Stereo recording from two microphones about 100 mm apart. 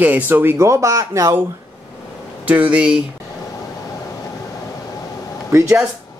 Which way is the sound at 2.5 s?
15° right (ahead or behind).